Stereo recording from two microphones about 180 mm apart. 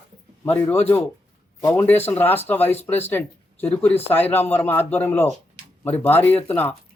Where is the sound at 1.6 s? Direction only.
20° left (ahead or behind).